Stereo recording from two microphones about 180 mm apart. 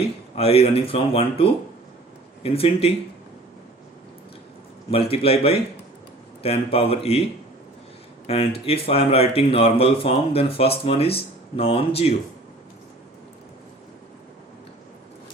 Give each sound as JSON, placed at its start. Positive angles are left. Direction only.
{"t": 0.3, "sound": "speech", "side_deg": 35}
{"t": 4.9, "sound": "speech", "side_deg": 30}
{"t": 8.3, "sound": "speech", "side_deg": 35}